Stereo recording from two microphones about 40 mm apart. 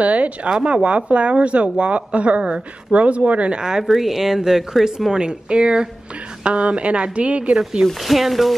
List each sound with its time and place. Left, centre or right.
0.0 s speech: right
0.6 s speech: right
3.8 s speech: centre; by 7.5 s right
7.8 s speech: centre